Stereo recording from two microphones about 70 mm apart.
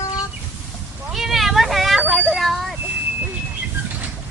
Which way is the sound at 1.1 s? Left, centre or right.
Centre.